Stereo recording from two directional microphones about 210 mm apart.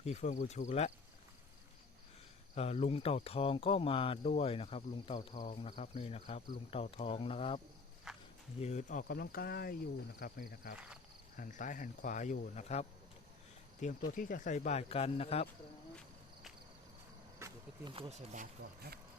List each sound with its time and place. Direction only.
0.0 s speech: 30° left (ahead or behind)
2.6 s speech: 30° left (ahead or behind)
8.1 s walk: centre (ahead or behind)
8.6 s speech: 35° left (ahead or behind)
10.8 s speech: 5° right (ahead or behind)
11.3 s speech: 40° left (ahead or behind)
17.4 s a sound: 20° right (ahead or behind)
18.3 s speech: 45° right (ahead or behind)